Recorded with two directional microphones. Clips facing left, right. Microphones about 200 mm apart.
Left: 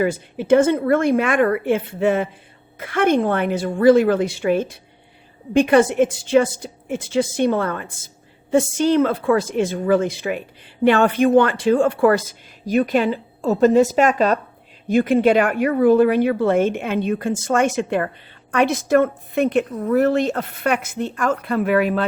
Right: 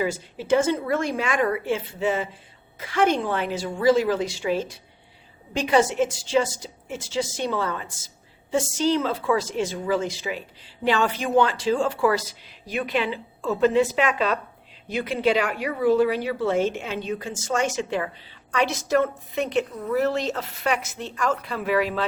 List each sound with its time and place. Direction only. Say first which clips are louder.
0.0 s a woman's voice: left 6 dB; 55° left (ahead or behind)